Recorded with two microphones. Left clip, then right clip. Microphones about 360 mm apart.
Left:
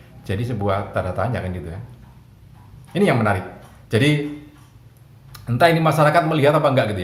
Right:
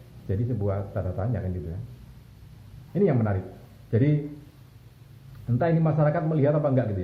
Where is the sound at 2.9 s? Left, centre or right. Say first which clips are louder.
Left 7 dB; left.